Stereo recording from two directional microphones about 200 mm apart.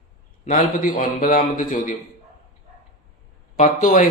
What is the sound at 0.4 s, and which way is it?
A man's voice, 40° left (ahead or behind).